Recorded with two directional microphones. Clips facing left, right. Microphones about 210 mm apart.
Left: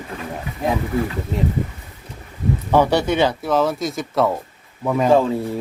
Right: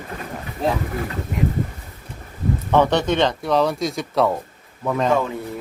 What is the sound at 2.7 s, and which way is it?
A man's voice, 10° left (ahead or behind).